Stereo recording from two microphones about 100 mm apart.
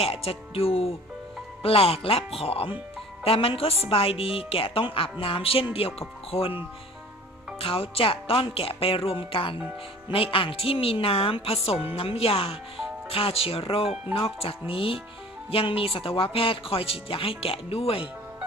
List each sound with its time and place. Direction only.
0.0 s speech: 80° left
7.6 s speech: 70° left (ahead or behind)